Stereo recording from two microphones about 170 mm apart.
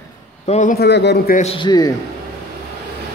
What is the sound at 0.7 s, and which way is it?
Speech, 85° left.